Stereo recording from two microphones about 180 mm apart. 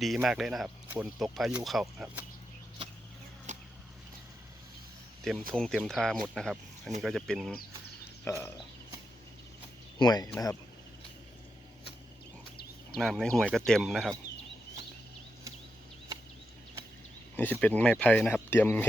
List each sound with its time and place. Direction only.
0.0 s speech: centre (ahead or behind)
5.5 s speech: centre (ahead or behind)
8.2 s speech: 15° left (ahead or behind)
10.0 s speech: 20° left (ahead or behind)
13.0 s speech: centre (ahead or behind)
13.4 s speech: 10° right (ahead or behind)
13.7 s speech: centre (ahead or behind)
17.3 s speech: 10° left (ahead or behind)